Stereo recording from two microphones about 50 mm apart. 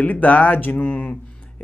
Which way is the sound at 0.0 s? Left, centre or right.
Left.